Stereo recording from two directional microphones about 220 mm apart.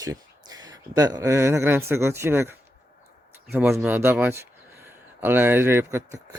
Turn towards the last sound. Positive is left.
turn(degrees=-10)  # may be behind; listen again after turning